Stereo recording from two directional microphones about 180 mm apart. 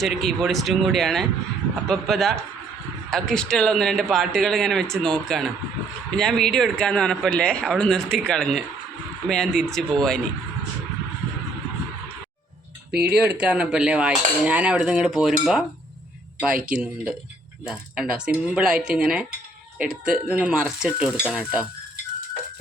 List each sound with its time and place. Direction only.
0.0 s speech: centre (ahead or behind)
12.9 s speech: 60° right (ahead or behind)
13.2 s speech: 5° right (ahead or behind)